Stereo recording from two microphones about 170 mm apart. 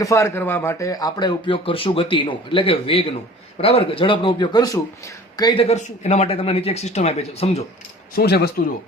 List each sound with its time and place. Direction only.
0.0 s speech: 15° left (ahead or behind)
5.6 s speech: 40° left (ahead or behind)
8.1 s speech: 65° left (ahead or behind)